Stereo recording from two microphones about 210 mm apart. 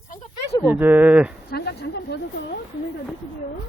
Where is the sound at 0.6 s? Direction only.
10° right (ahead or behind).